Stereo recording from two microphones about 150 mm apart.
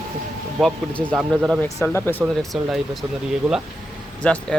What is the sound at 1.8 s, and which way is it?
Speech, 15° left (ahead or behind).